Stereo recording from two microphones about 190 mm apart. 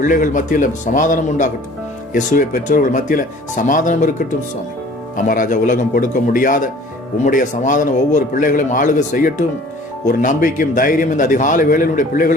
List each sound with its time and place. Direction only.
0.0 s a man's voice: 45° left (ahead or behind)